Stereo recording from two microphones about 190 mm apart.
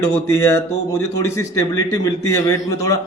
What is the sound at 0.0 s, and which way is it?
A man's voice, 15° left (ahead or behind).